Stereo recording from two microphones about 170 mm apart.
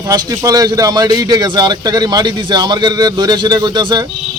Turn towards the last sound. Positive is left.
turn(degrees=-25)  # may be behind; listen again after turning